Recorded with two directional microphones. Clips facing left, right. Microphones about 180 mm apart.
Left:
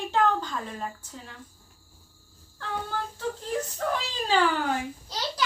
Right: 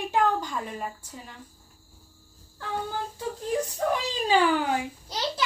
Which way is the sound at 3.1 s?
15° right (ahead or behind).